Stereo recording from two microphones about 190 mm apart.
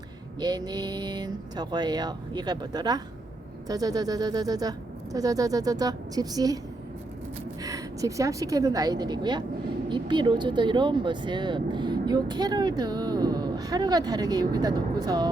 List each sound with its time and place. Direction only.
0.3 s speech: 20° right (ahead or behind)
7.6 s speech: 20° right (ahead or behind)